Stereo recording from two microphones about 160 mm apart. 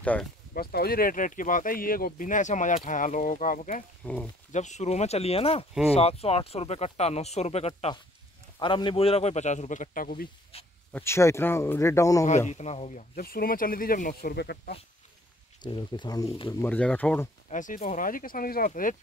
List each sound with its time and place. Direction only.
0.0 s speech: 10° left (ahead or behind)
0.6 s a man's voice: 70° left (ahead or behind); by 3.8 s 55° left (ahead or behind)
4.0 s speech: 10° left (ahead or behind)
4.5 s a man's voice: 45° left (ahead or behind)
8.5 s a man's voice: 30° left (ahead or behind); by 10.2 s 60° left (ahead or behind)
10.9 s speech: 15° left (ahead or behind)
12.4 s a man's voice: 45° left (ahead or behind)
13.1 s speech: 65° left (ahead or behind); by 14.6 s 85° left
15.6 s speech: 30° left (ahead or behind)
16.6 s speech: 10° left (ahead or behind)
17.5 s speech: 50° left (ahead or behind)